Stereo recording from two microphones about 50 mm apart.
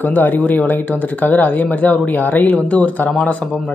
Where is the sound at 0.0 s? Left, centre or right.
Left.